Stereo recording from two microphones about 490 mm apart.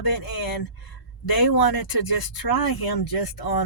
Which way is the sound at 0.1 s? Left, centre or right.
Left.